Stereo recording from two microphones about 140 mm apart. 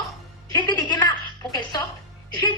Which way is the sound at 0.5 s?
30° left (ahead or behind).